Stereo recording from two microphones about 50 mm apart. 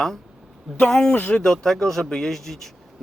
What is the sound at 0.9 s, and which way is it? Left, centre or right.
Speech, centre.